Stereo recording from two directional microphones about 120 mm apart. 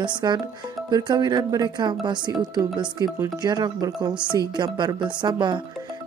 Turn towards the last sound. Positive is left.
turn(degrees=-40)  # may be behind; listen again after turning